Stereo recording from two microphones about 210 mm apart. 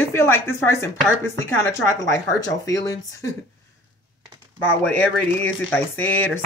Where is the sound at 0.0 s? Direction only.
10° left (ahead or behind).